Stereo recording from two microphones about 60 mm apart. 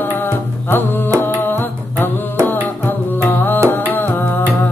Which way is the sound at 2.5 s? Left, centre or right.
Left.